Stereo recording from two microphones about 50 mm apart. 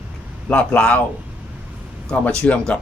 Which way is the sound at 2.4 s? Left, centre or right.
Left.